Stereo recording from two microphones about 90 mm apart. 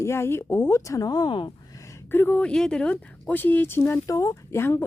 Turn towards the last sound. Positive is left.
turn(degrees=30)  # may be behind; listen again after turning